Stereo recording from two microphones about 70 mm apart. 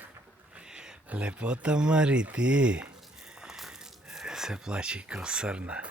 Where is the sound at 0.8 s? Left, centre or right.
Centre.